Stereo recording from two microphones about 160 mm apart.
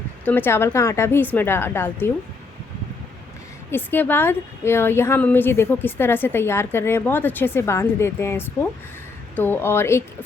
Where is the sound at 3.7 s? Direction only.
15° left (ahead or behind).